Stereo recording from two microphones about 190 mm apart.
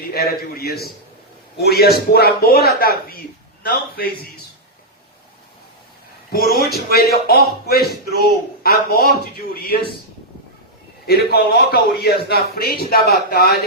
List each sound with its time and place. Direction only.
0.1 s a man's voice: 55° left (ahead or behind)
6.3 s speech: 50° left (ahead or behind)
11.0 s a man's voice: 55° left (ahead or behind)